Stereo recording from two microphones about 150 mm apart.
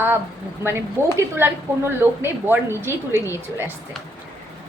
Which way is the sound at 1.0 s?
15° right (ahead or behind).